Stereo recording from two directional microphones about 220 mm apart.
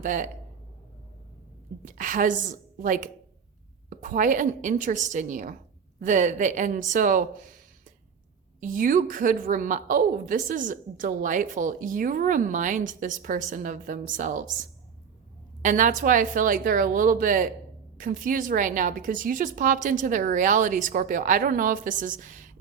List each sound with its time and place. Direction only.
0.0 s a woman's voice: 35° right (ahead or behind)
1.8 s a woman's voice: 40° right (ahead or behind)
8.6 s a woman's voice: 35° right (ahead or behind)
15.6 s a woman's voice: 35° right (ahead or behind)